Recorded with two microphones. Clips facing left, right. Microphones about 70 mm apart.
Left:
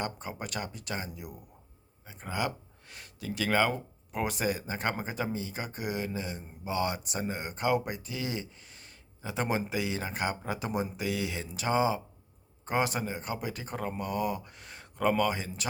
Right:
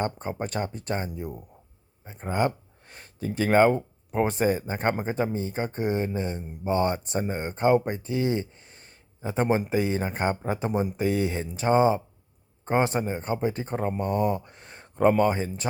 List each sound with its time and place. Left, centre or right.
0.0 s speech: right